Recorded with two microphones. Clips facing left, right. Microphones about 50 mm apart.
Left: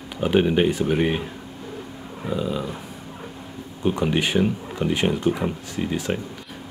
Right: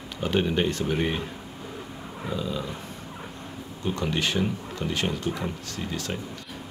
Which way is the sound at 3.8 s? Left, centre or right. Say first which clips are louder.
Left 6 dB; centre.